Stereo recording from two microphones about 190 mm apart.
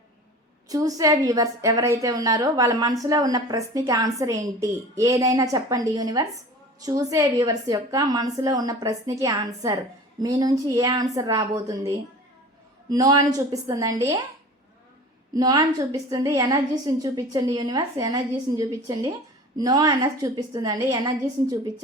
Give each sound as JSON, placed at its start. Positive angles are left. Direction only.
{"t": 0.7, "sound": "a woman's voice", "side_deg": -20}
{"t": 15.4, "sound": "a woman's voice", "side_deg": -20}